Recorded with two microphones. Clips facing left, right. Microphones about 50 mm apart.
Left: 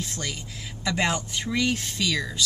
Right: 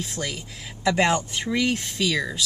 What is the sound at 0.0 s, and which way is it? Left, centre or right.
Speech, centre.